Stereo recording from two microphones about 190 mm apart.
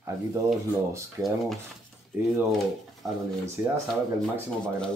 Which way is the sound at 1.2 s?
10° right (ahead or behind).